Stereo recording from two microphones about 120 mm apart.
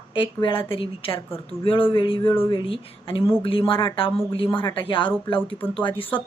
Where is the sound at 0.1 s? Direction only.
40° left (ahead or behind).